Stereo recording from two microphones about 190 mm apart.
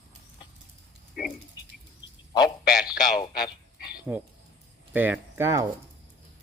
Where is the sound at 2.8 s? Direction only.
20° left (ahead or behind).